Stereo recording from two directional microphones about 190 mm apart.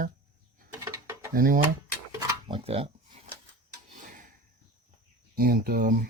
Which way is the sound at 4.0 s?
45° right (ahead or behind).